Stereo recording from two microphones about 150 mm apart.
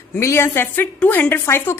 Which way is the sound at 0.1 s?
15° left (ahead or behind).